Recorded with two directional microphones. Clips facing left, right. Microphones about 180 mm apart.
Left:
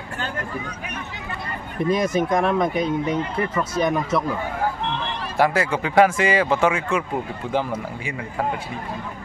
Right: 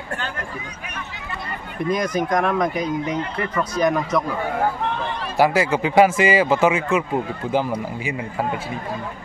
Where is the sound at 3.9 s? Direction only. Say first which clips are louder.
Right 1 dB; 5° left (ahead or behind).